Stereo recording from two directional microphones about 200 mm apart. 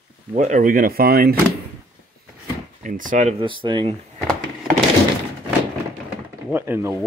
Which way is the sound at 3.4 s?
25° right (ahead or behind).